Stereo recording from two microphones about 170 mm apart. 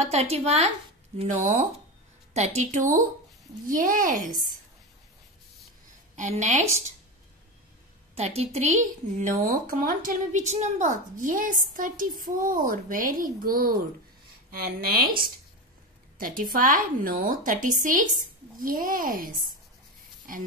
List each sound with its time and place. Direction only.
0.1 s a woman's voice: 40° right (ahead or behind)
6.1 s a woman's voice: 45° right (ahead or behind)
8.1 s a woman's voice: 35° right (ahead or behind)
9.5 s a woman's voice: 55° right (ahead or behind)
16.2 s a woman's voice: 55° right (ahead or behind)